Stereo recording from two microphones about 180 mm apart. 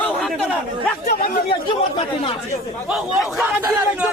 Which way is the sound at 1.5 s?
30° left (ahead or behind).